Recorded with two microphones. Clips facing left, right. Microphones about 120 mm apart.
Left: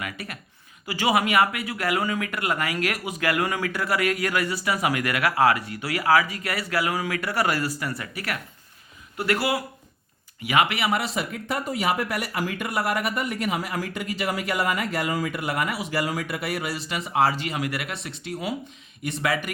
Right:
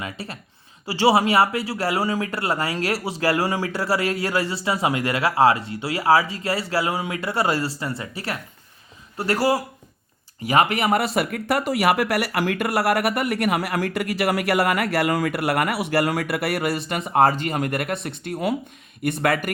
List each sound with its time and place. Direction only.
0.0 s speech: 30° right (ahead or behind); by 19.5 s 55° right (ahead or behind)